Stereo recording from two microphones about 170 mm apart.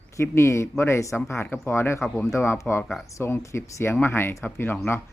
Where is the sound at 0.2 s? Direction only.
15° left (ahead or behind).